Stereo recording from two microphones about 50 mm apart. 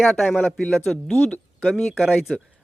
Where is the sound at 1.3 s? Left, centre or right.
Left.